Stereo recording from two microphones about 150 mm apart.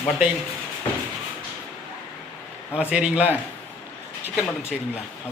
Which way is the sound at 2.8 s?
5° right (ahead or behind).